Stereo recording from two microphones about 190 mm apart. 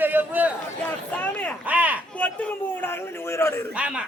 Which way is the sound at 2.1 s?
5° left (ahead or behind).